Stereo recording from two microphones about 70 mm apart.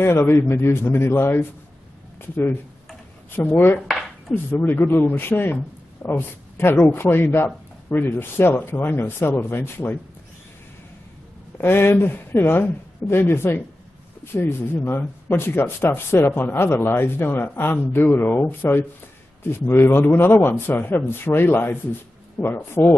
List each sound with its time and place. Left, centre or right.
0.0 s speech: left
11.5 s speech: left